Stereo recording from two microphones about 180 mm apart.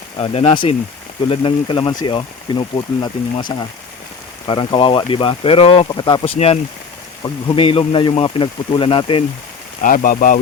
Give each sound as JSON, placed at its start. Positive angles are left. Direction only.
{"t": 0.2, "sound": "speech", "side_deg": 35}
{"t": 4.4, "sound": "speech", "side_deg": 30}
{"t": 9.8, "sound": "speech", "side_deg": 50}